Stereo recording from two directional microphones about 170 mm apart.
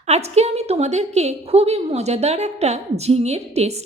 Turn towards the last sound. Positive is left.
turn(degrees=-40)  # may be behind; listen again after turning